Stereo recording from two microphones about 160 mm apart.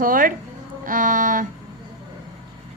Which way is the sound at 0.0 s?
60° right (ahead or behind).